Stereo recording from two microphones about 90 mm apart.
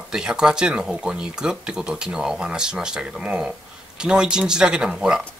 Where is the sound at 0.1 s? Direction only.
10° right (ahead or behind).